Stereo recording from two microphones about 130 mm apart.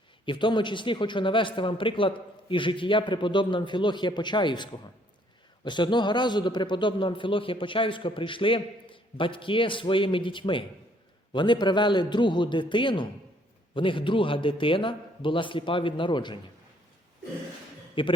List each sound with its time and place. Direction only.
0.3 s a man's voice: 40° left (ahead or behind)
18.0 s a man's voice: 40° left (ahead or behind)